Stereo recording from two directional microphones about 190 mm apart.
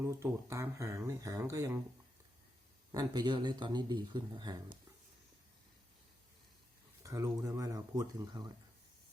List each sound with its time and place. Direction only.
0.0 s speech: 15° right (ahead or behind)
2.9 s speech: 20° right (ahead or behind)
7.0 s speech: 15° right (ahead or behind)